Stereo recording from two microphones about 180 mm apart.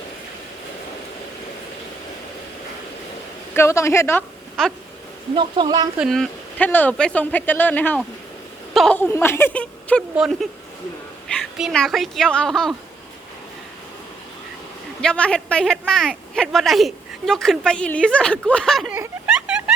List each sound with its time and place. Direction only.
3.5 s speech: 15° left (ahead or behind)
4.6 s speech: 5° left (ahead or behind)
5.3 s a woman's voice: 25° right (ahead or behind)
6.0 s a woman's voice: centre (ahead or behind)
9.0 s speech: 10° left (ahead or behind)
11.3 s speech: centre (ahead or behind)
15.0 s speech: 5° left (ahead or behind)
18.9 s a sound: 5° right (ahead or behind)